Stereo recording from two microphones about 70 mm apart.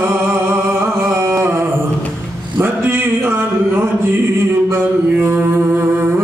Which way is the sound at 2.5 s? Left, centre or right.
Right.